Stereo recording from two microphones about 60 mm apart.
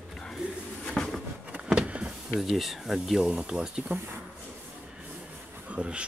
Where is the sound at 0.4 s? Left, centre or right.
Centre.